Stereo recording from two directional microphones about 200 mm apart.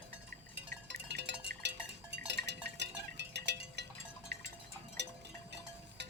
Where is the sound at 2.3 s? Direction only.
60° right (ahead or behind).